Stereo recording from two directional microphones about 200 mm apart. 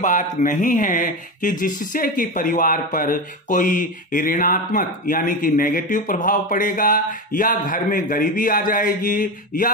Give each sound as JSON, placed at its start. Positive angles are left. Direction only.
{"t": 0.0, "sound": "speech", "side_deg": 40}